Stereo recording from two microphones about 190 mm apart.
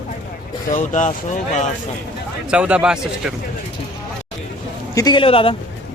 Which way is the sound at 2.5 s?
5° right (ahead or behind).